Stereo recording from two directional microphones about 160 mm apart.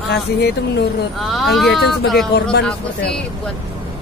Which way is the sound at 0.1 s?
90° left.